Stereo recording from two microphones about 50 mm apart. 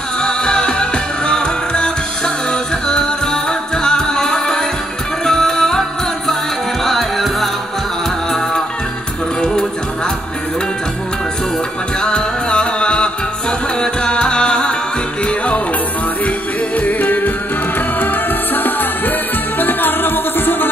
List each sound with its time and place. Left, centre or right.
0.2 s music: centre
9.4 s music: centre
12.0 s music: centre; by 20.7 s left